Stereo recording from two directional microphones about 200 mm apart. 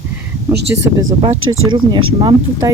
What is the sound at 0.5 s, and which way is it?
Speech, 60° right (ahead or behind).